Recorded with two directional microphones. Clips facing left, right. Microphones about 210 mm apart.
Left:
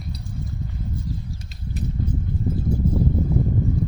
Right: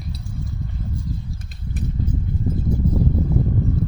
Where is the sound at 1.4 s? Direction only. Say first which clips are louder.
Right 1 dB; 55° right (ahead or behind).